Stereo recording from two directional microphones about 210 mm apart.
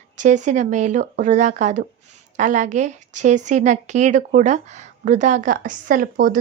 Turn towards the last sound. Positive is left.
turn(degrees=-40)  # may be behind; listen again after turning